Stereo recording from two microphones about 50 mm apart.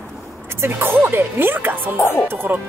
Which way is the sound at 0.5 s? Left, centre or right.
Right.